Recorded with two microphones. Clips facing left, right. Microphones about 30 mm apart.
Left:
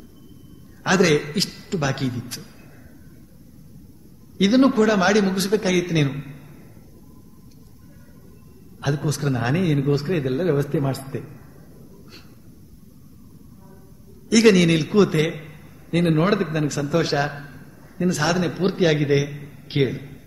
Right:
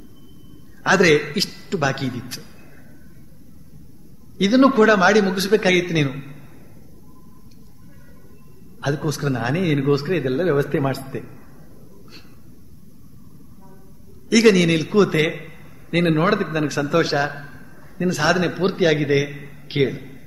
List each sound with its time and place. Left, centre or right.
0.8 s a man's voice: centre
4.4 s a man's voice: centre
8.8 s a man's voice: centre
9.8 s a man's voice: right
10.0 s speech: centre
14.3 s a man's voice: centre
16.3 s a man's voice: centre
16.6 s a man's voice: right
16.9 s a man's voice: centre
19.2 s speech: centre
19.6 s a man's voice: centre